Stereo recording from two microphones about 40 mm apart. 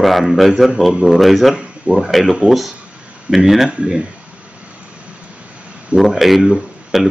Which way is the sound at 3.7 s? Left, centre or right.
Right.